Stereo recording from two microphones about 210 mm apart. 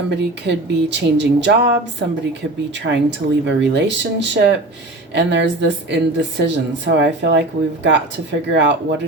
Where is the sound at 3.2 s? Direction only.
45° right (ahead or behind).